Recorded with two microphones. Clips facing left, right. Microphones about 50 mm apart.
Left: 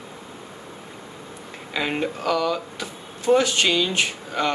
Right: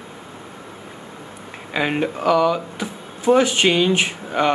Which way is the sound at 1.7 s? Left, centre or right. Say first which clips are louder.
Right 4 dB; centre.